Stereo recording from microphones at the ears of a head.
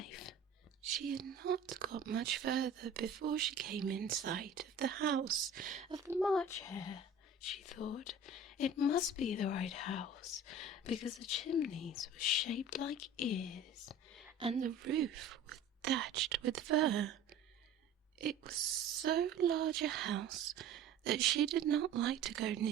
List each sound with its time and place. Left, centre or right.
0.0 s a sound: left
0.8 s speech: right
6.5 s speech: left
14.5 s speech: right
18.2 s speech: right